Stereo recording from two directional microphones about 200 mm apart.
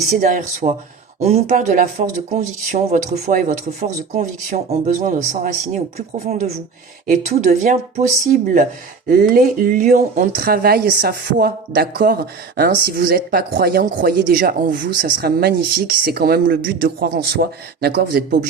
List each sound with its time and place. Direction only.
0.1 s speech: 40° right (ahead or behind)